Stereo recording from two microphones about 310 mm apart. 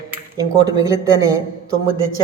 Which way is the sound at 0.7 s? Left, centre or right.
Centre.